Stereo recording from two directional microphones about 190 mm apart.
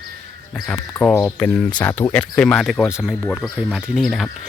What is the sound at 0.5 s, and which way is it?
Speech, 5° left (ahead or behind).